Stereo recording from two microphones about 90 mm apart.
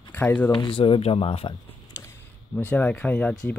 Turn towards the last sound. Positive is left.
turn(degrees=15)  # may be behind; listen again after turning